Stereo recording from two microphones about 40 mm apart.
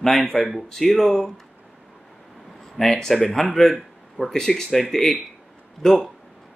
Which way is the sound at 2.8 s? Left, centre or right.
Centre.